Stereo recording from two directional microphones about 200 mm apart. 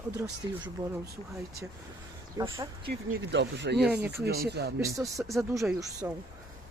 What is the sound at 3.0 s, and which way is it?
Speech, 75° right (ahead or behind).